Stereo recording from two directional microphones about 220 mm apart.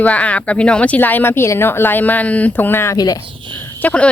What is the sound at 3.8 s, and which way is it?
Speech, 5° left (ahead or behind).